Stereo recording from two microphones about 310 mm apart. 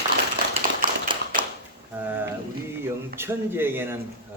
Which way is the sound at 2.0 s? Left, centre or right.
Centre.